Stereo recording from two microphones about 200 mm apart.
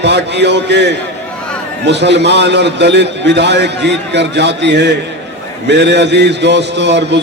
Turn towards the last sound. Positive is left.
turn(degrees=-60)  # may be behind; listen again after turning